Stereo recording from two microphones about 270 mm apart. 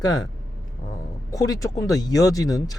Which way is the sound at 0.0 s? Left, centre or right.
Centre.